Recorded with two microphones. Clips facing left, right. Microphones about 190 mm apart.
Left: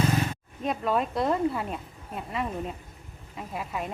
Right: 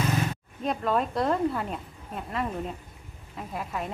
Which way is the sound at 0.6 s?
Centre (ahead or behind).